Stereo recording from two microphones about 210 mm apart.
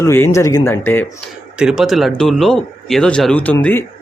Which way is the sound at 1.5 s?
5° right (ahead or behind).